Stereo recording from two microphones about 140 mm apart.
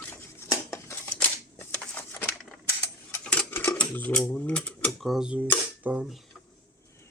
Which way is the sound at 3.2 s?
10° left (ahead or behind).